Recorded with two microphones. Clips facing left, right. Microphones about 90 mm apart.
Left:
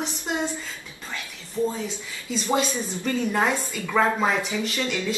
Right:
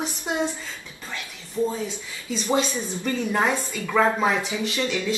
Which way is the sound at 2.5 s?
5° right (ahead or behind).